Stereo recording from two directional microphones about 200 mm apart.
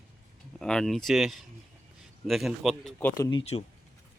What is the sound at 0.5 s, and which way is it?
Speech, 5° left (ahead or behind).